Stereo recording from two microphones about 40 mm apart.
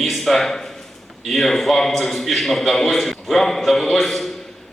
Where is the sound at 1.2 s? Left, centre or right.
Centre.